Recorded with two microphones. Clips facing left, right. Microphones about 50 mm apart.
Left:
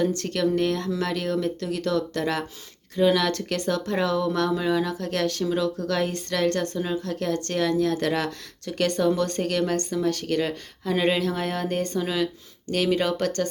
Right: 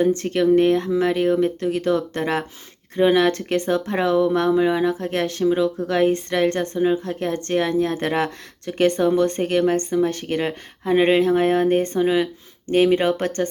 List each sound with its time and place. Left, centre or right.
0.0 s speech: right